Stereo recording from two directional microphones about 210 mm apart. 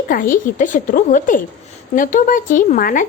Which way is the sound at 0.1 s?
40° left (ahead or behind).